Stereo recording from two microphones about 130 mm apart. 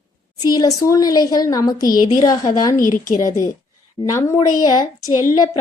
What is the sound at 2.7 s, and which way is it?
Speech, 90° left.